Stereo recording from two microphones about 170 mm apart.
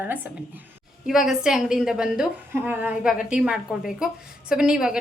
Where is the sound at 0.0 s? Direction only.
10° right (ahead or behind).